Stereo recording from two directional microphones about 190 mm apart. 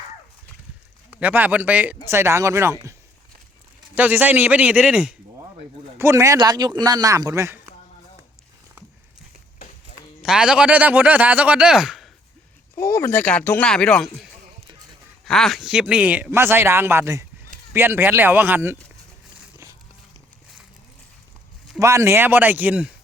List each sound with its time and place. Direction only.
1.2 s a man's voice: 10° right (ahead or behind)
3.9 s a man's voice: 10° right (ahead or behind)
6.0 s a man's voice: 15° right (ahead or behind)
10.2 s speech: 5° right (ahead or behind)
12.7 s a man's voice: 15° left (ahead or behind); by 18.8 s 10° right (ahead or behind)
19.4 s a sound: 15° right (ahead or behind)
21.8 s a man's voice: 15° right (ahead or behind)